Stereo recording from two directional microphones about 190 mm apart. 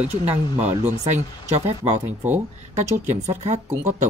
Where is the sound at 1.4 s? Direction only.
35° right (ahead or behind).